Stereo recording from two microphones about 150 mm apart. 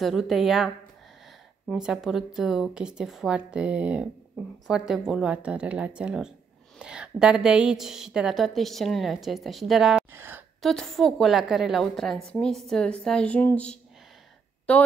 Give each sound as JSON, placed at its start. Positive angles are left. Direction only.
{"t": 0.0, "sound": "a woman's voice", "side_deg": 0}
{"t": 1.7, "sound": "a woman's voice", "side_deg": -5}
{"t": 10.1, "sound": "a sound", "side_deg": -15}
{"t": 10.6, "sound": "a woman's voice", "side_deg": 0}